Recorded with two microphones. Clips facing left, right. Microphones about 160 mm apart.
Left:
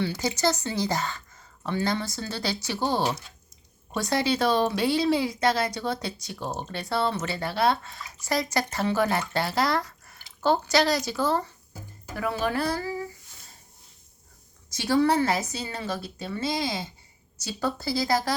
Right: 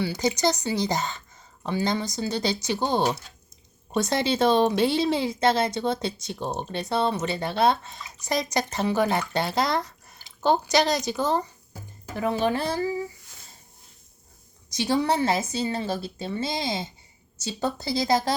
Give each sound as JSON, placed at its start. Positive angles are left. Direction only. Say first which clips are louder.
{"t": 0.0, "sound": "speech", "louder": "right 2 dB", "side_deg": -20}
{"t": 14.7, "sound": "speech", "louder": "left 1 dB", "side_deg": -20}